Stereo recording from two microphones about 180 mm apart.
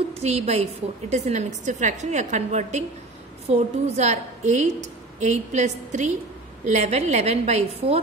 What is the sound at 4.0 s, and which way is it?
A woman's voice, 40° right (ahead or behind).